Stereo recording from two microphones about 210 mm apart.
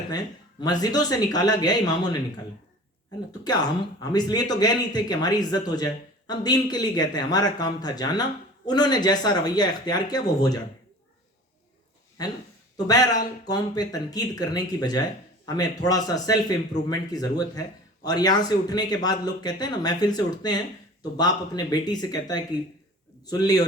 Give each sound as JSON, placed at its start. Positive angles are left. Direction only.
{"t": 0.6, "sound": "a man's voice", "side_deg": 20}
{"t": 3.4, "sound": "a man's voice", "side_deg": 20}
{"t": 12.7, "sound": "a man's voice", "side_deg": 20}